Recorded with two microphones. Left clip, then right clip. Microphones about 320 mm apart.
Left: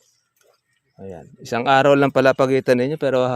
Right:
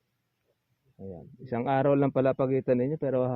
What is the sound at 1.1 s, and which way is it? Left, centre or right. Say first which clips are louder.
Speech: left 10 dB; left.